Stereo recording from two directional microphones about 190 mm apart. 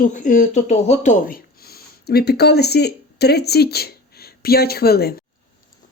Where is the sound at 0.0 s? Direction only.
40° left (ahead or behind).